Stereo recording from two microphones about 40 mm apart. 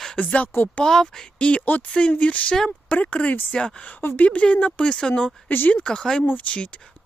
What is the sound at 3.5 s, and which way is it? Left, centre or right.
Speech, centre.